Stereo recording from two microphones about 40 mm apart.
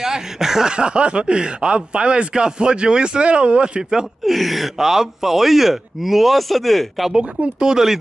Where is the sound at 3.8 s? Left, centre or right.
Centre.